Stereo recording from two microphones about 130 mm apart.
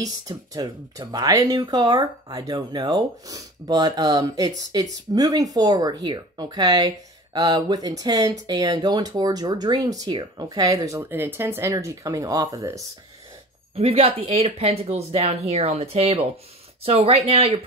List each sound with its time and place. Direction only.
0.0 s speech: 30° right (ahead or behind)
13.7 s speech: 45° right (ahead or behind)